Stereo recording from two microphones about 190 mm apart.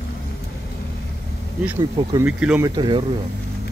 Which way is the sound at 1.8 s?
20° right (ahead or behind).